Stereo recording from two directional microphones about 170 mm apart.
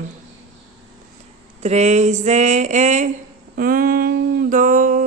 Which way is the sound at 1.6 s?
40° right (ahead or behind).